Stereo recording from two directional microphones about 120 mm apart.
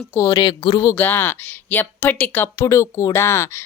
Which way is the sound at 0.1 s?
25° left (ahead or behind).